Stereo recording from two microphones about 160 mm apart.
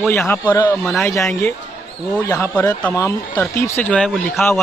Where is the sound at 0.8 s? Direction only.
5° left (ahead or behind).